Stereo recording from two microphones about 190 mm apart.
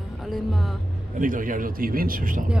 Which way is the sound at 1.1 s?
45° right (ahead or behind).